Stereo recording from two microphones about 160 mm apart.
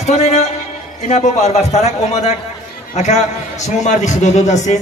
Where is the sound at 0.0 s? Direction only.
45° left (ahead or behind).